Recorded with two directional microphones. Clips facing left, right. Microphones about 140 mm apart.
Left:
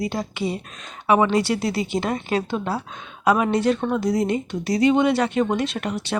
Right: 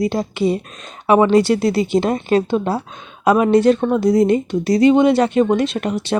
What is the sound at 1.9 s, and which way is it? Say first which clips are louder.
Speech: right 7 dB; 30° right (ahead or behind).